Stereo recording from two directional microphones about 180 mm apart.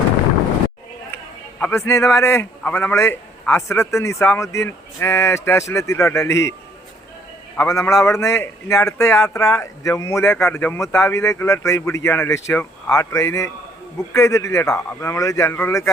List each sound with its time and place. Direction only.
1.6 s a man's voice: 15° left (ahead or behind)
7.5 s a man's voice: 15° left (ahead or behind)